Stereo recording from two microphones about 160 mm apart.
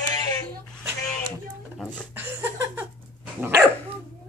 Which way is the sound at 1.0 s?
5° left (ahead or behind).